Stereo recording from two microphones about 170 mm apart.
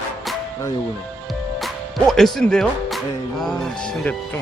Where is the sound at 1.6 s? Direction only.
Centre (ahead or behind).